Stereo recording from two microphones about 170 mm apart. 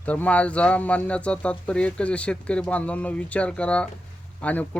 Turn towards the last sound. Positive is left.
turn(degrees=10)  # may be behind; listen again after turning